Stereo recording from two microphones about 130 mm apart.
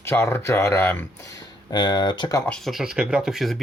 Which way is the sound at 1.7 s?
35° left (ahead or behind).